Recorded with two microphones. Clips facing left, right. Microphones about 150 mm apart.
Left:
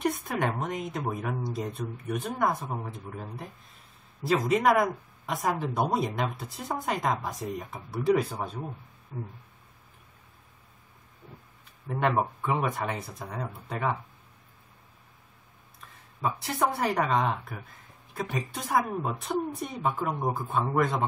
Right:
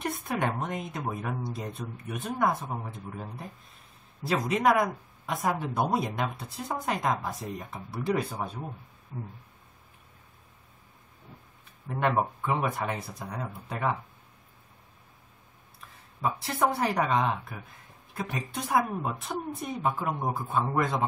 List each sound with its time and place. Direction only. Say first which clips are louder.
0.0 s speech: left 2 dB; centre (ahead or behind)
4.2 s speech: left 2 dB; centre (ahead or behind)
11.9 s speech: even; centre (ahead or behind)
16.2 s speech: even; centre (ahead or behind)